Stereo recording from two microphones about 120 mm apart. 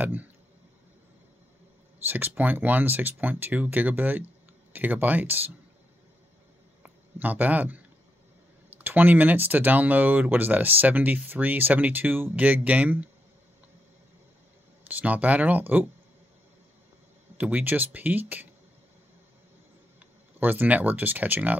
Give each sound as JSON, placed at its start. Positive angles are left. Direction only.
{"t": 0.0, "sound": "speech", "side_deg": -15}
{"t": 2.0, "sound": "speech", "side_deg": -15}
{"t": 6.8, "sound": "a man's voice", "side_deg": -15}
{"t": 14.9, "sound": "speech", "side_deg": -15}
{"t": 17.4, "sound": "speech", "side_deg": -15}
{"t": 20.3, "sound": "speech", "side_deg": -15}